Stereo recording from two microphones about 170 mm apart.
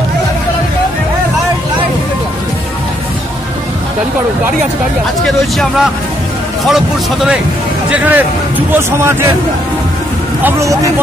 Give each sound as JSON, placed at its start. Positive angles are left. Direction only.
{"t": 5.2, "sound": "a man's voice", "side_deg": 0}
{"t": 10.4, "sound": "a man's voice", "side_deg": -20}